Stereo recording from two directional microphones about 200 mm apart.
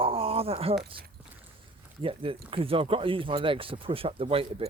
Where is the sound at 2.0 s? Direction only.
25° right (ahead or behind).